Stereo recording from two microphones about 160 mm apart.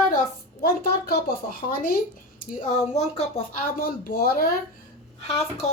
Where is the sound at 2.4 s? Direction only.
50° left (ahead or behind).